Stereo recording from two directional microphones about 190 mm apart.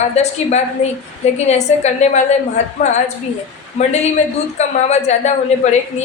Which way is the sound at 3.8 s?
35° left (ahead or behind).